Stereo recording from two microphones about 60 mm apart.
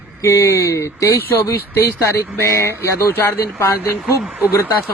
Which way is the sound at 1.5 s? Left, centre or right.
Left.